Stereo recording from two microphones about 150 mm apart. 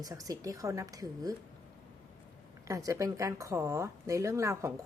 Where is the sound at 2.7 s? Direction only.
20° right (ahead or behind).